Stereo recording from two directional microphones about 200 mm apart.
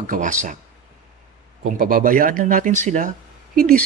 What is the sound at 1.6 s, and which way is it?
Speech, 45° right (ahead or behind).